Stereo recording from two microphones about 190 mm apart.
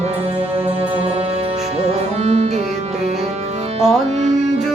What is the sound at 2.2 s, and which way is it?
Music, 35° right (ahead or behind).